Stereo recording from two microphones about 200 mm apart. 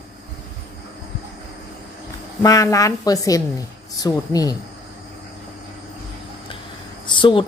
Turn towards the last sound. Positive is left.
turn(degrees=25)  # may be behind; listen again after turning